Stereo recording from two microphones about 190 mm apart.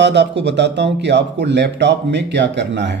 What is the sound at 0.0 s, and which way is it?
Speech, 65° right (ahead or behind).